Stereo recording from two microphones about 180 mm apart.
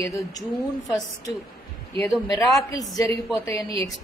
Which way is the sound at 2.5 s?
20° left (ahead or behind).